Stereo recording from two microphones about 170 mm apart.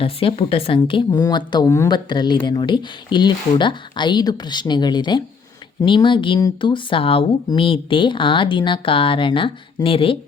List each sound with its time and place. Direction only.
0.0 s speech: 35° left (ahead or behind)